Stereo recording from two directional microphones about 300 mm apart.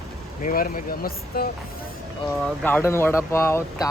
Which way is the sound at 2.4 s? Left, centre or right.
Centre.